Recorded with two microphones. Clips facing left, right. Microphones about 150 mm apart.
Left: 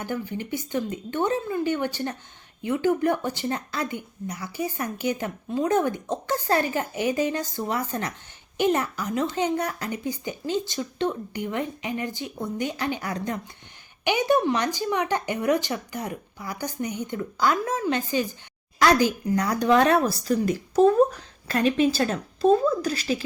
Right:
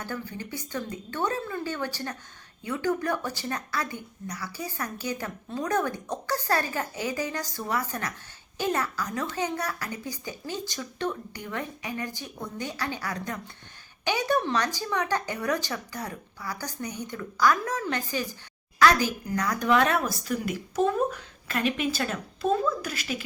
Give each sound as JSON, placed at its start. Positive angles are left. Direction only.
{"t": 0.0, "sound": "a woman's voice", "side_deg": 20}